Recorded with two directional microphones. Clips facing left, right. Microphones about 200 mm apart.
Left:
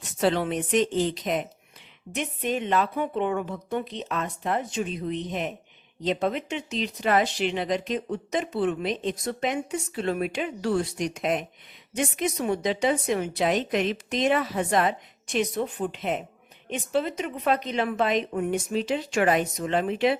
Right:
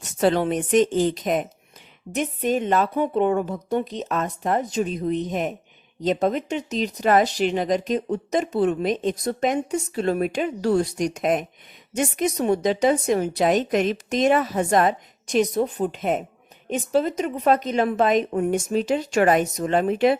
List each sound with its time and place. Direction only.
0.0 s speech: 45° right (ahead or behind)